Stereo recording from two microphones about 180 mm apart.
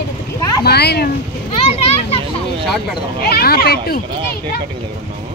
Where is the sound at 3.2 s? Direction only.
60° left (ahead or behind).